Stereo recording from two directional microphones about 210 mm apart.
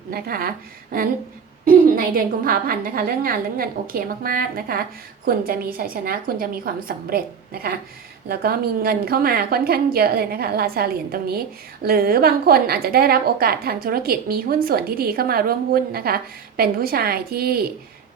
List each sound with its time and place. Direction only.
0.1 s a woman's voice: 45° right (ahead or behind)